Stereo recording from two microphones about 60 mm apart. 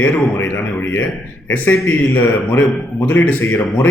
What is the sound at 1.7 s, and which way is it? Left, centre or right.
Speech, left.